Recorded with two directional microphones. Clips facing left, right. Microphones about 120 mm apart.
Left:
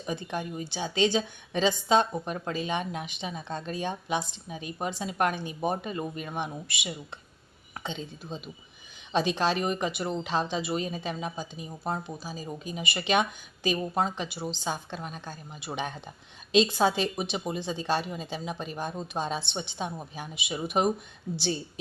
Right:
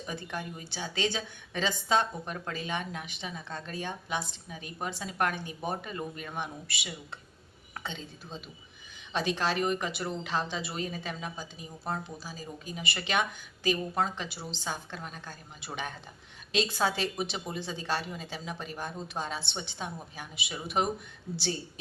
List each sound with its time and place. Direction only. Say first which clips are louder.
0.0 s a woman's voice: left 5 dB; 20° left (ahead or behind)